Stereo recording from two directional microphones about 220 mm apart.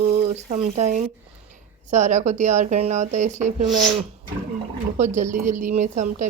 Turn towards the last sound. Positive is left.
turn(degrees=-35)  # may be behind; listen again after turning